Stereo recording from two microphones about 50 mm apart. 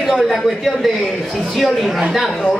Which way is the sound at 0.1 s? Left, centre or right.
Centre.